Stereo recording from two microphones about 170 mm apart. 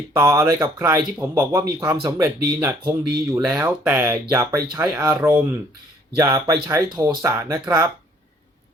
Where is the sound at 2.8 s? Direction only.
20° right (ahead or behind).